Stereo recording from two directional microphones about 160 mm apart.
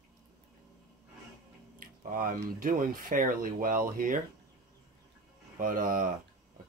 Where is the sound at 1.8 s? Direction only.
60° right (ahead or behind).